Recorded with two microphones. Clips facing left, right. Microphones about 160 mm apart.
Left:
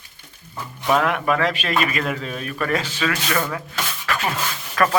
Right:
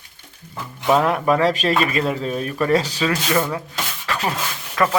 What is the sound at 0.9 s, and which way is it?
Speech, 30° right (ahead or behind).